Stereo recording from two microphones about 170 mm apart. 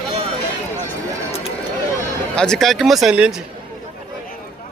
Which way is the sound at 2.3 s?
5° left (ahead or behind).